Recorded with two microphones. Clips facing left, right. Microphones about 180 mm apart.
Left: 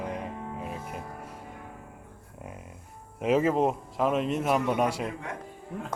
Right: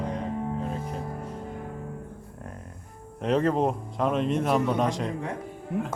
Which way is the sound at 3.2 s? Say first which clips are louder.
Even; 5° left (ahead or behind).